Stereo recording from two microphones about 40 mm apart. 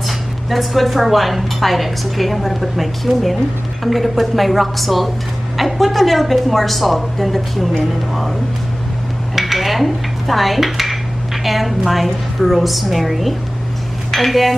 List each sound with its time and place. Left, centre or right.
0.5 s a woman's voice: centre
9.3 s dishes: centre
11.4 s a woman's voice: centre